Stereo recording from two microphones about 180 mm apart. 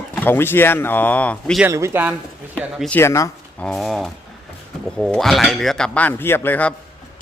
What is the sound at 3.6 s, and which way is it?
A man's voice, centre (ahead or behind).